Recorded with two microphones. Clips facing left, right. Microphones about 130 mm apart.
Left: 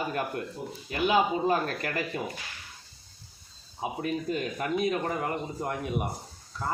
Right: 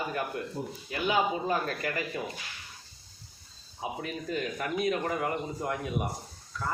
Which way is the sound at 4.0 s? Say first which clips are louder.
Left 4 dB; 30° left (ahead or behind).